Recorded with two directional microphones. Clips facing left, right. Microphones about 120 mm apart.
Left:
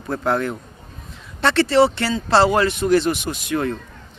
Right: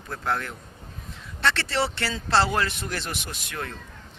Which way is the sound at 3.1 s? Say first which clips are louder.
Left 13 dB; 90° left.